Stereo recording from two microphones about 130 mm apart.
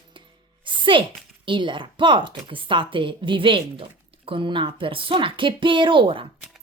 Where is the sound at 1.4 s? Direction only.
40° right (ahead or behind).